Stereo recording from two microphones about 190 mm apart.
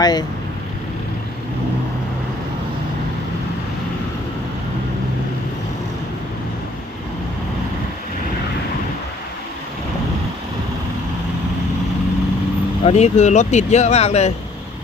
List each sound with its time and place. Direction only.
0.0 s speech: 20° left (ahead or behind)
12.8 s speech: 35° left (ahead or behind)